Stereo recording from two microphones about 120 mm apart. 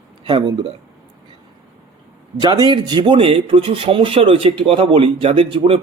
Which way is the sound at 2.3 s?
35° right (ahead or behind).